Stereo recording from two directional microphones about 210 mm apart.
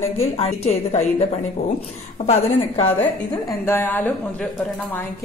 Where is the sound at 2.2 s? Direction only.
30° left (ahead or behind).